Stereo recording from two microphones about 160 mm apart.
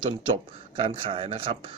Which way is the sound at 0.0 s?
30° right (ahead or behind).